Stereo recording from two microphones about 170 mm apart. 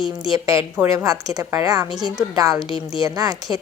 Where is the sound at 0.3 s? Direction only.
20° right (ahead or behind).